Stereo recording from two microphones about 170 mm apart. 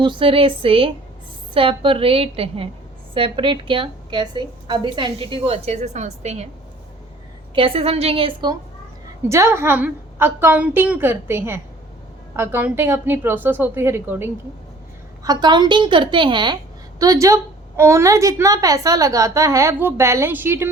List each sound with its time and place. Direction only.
0.0 s a woman's voice: 30° right (ahead or behind)
7.5 s a woman's voice: 30° right (ahead or behind)
9.3 s a woman's voice: 15° right (ahead or behind)